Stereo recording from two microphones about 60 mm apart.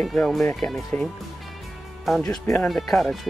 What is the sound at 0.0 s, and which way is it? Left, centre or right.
Speech, centre.